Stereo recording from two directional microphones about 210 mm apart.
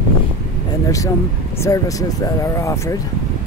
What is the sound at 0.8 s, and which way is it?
Speech, 15° left (ahead or behind).